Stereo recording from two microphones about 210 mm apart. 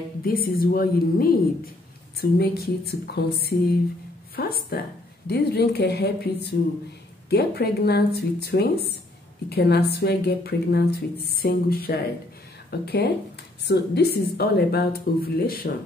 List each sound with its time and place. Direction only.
0.3 s speech: 45° left (ahead or behind)